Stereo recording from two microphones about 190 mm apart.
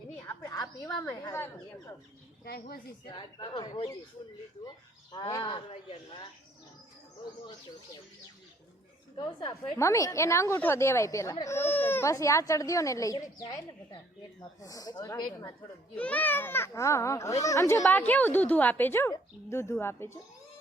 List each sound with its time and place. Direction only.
0.2 s a sound: 15° left (ahead or behind)
1.2 s a woman's voice: 10° left (ahead or behind)
2.4 s speech: 55° left (ahead or behind)
3.1 s speech: 25° left (ahead or behind)
5.1 s speech: 20° left (ahead or behind)
9.1 s a woman's voice: 25° left (ahead or behind)
14.6 s a woman's voice: 20° left (ahead or behind)